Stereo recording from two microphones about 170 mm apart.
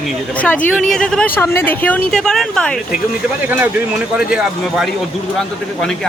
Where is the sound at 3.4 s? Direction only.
10° right (ahead or behind).